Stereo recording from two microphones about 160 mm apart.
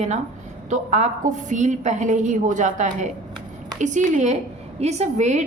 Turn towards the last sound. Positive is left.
turn(degrees=-45)  # may be behind; listen again after turning